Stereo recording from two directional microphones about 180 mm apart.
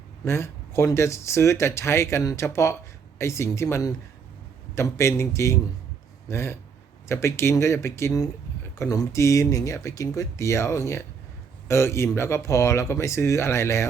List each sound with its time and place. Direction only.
0.3 s speech: 15° left (ahead or behind)